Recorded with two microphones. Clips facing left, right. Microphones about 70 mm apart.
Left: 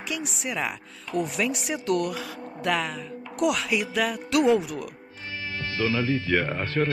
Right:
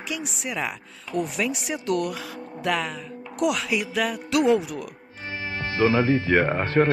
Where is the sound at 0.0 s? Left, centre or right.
Centre.